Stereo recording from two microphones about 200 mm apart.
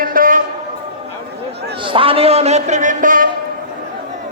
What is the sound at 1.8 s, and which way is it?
A man's voice, 25° right (ahead or behind).